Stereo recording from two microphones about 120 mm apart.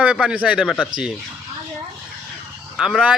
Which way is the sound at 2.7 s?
5° right (ahead or behind).